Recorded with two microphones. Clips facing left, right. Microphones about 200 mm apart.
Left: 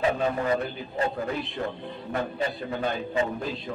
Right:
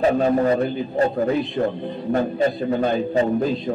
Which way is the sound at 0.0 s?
40° right (ahead or behind).